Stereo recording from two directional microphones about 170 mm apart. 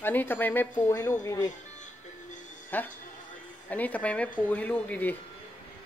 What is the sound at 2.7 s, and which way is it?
Speech, 10° left (ahead or behind).